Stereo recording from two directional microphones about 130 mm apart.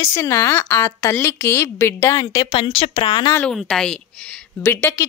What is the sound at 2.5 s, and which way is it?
Speech, 45° left (ahead or behind).